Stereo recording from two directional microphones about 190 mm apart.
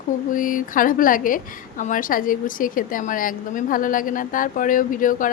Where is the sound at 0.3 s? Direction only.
45° left (ahead or behind).